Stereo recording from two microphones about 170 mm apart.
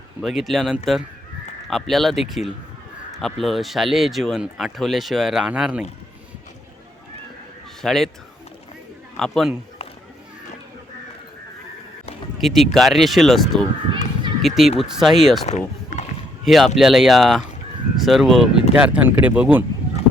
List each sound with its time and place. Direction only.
0.2 s speech: centre (ahead or behind)
7.8 s speech: centre (ahead or behind)
9.1 s a man's voice: 5° left (ahead or behind)
12.4 s speech: centre (ahead or behind)
15.4 s run: 40° left (ahead or behind)
16.5 s speech: centre (ahead or behind)